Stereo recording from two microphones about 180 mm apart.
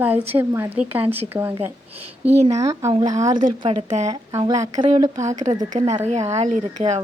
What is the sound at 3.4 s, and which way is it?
Speech, 40° right (ahead or behind).